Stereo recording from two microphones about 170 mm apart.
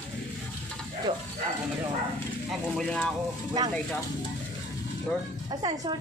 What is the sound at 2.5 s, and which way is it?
Speech, centre (ahead or behind).